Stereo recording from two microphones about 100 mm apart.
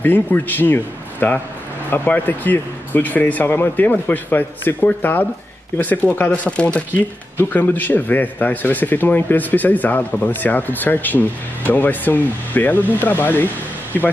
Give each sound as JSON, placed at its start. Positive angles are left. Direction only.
{"t": 0.0, "sound": "a man's voice", "side_deg": 20}